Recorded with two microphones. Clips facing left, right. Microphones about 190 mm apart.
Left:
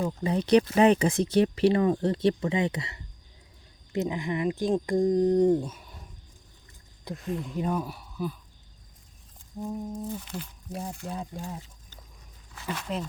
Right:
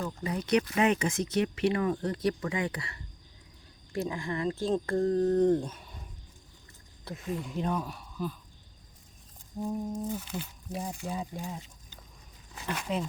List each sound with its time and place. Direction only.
0.2 s speech: 30° left (ahead or behind); by 5.8 s 5° left (ahead or behind)
7.3 s speech: centre (ahead or behind)
9.6 s speech: 5° right (ahead or behind)
12.7 s speech: centre (ahead or behind)